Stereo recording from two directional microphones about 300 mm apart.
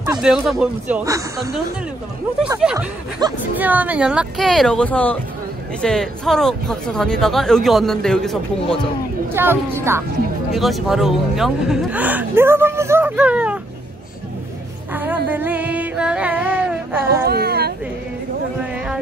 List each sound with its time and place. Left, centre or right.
0.0 s a woman's voice: centre
15.0 s music: centre
17.3 s a sound: right